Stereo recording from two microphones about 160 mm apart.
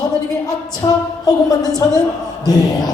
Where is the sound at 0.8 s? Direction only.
25° left (ahead or behind).